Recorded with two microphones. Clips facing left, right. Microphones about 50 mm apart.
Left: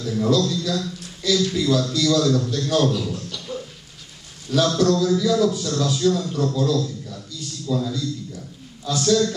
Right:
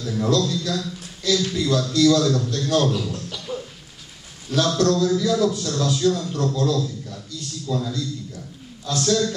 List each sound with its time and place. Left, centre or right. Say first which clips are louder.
0.0 s a man's voice: left 1 dB; centre
3.3 s beatboxing: right 1 dB; centre
4.5 s a man's voice: left 1 dB; centre